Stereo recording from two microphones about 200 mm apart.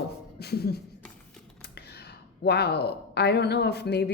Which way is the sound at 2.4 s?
55° left (ahead or behind).